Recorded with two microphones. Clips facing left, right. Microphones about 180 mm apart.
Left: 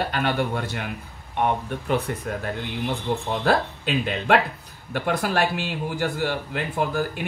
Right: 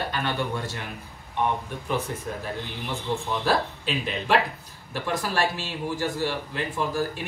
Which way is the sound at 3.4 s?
60° left (ahead or behind).